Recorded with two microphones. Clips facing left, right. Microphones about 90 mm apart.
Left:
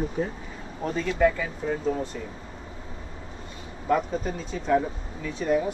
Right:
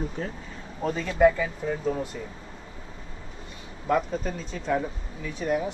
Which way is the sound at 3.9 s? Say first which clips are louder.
Left 1 dB; centre (ahead or behind).